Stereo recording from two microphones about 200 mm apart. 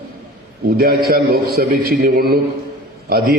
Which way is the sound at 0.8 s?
50° right (ahead or behind).